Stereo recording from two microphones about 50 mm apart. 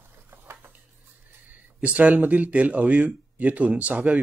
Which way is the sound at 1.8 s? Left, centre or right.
Right.